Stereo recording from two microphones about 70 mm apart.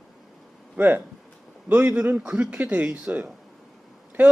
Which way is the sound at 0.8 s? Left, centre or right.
Right.